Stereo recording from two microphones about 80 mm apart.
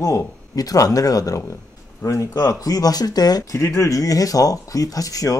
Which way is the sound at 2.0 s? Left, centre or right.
Left.